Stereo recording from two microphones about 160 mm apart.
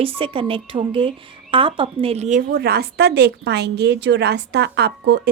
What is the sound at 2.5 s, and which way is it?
Speech, 80° right.